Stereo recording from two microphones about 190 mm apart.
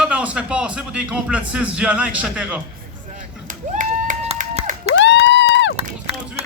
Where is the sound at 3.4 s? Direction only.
45° right (ahead or behind).